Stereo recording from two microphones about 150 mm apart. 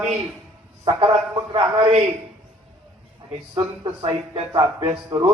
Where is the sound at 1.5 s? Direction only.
35° right (ahead or behind).